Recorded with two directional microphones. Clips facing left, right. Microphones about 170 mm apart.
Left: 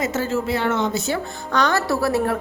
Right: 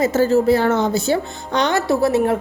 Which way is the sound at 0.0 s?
35° right (ahead or behind).